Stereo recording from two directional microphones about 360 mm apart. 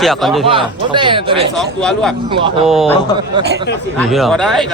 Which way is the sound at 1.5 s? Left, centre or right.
Centre.